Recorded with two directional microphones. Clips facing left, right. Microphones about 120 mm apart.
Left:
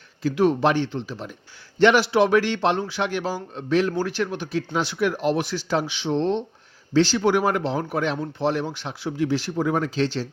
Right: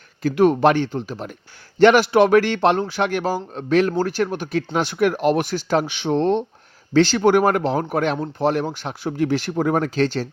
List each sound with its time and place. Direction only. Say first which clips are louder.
0.2 s speech: right 4 dB; 55° right (ahead or behind)